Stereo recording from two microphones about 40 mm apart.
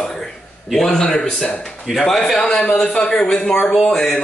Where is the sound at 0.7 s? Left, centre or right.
Centre.